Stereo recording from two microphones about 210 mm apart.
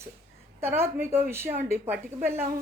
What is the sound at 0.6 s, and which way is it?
Speech, 10° right (ahead or behind).